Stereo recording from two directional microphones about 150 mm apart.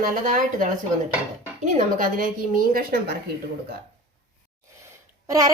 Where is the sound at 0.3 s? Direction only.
60° right (ahead or behind); by 3.2 s 80° right.